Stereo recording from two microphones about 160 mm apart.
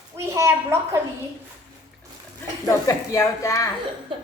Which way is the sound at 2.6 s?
20° left (ahead or behind).